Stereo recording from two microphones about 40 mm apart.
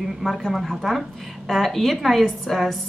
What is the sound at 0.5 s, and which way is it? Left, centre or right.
A woman's voice, centre.